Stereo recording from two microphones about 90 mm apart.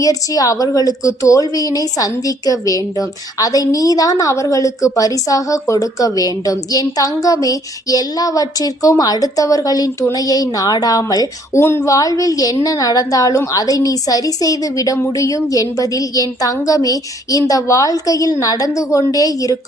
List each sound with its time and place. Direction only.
0.0 s a woman's voice: 40° left (ahead or behind)